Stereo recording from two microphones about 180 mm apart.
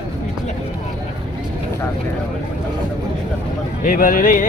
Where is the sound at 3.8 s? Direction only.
50° left (ahead or behind).